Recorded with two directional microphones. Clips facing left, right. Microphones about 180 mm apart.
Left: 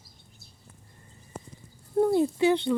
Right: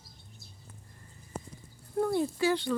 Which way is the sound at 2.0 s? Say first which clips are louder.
Left 6 dB; 25° left (ahead or behind).